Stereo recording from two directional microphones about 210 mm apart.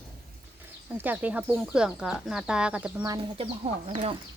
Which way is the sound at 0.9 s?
10° right (ahead or behind).